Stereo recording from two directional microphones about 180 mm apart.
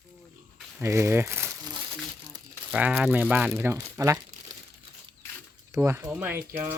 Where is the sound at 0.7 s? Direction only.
15° right (ahead or behind).